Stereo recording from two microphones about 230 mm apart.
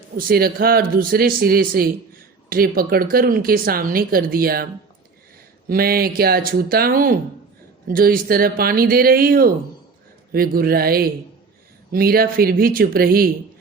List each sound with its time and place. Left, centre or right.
0.3 s a woman's voice: right